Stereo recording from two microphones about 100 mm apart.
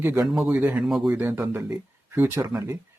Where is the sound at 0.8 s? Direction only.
Centre (ahead or behind).